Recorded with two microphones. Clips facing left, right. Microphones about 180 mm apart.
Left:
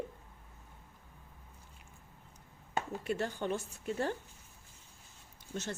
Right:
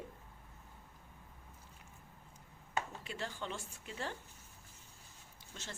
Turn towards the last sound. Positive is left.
turn(degrees=55)  # may be behind; listen again after turning